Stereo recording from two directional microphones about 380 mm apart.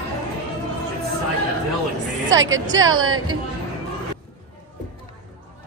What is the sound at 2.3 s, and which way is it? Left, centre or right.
Speech, right.